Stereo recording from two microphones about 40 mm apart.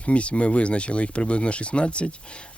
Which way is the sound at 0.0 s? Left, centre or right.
Left.